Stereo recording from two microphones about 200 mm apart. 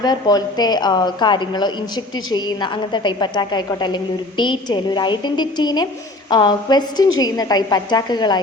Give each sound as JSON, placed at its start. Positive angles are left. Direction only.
{"t": 0.0, "sound": "a woman's voice", "side_deg": 20}